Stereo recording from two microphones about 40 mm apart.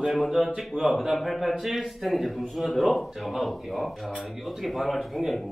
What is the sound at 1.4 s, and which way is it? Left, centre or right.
Speech, centre.